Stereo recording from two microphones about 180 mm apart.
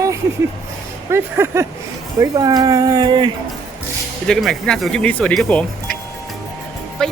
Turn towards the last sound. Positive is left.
turn(degrees=5)  # may be behind; listen again after turning